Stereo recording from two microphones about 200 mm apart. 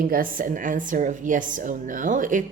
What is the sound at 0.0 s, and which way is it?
Speech, 45° right (ahead or behind).